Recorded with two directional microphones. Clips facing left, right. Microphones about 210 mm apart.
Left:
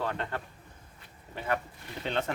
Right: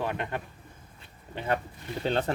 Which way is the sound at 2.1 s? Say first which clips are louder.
Right 4 dB; 35° right (ahead or behind).